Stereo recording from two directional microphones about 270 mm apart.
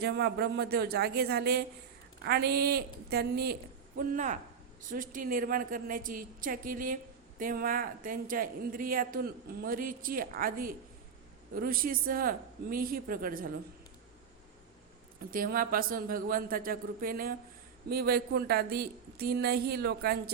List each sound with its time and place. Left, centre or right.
0.0 s a woman's voice: right
15.3 s a woman's voice: right